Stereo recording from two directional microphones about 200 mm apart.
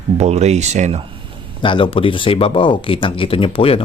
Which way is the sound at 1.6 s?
25° left (ahead or behind).